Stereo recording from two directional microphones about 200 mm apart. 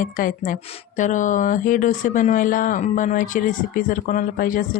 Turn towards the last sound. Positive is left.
turn(degrees=45)  # may be behind; listen again after turning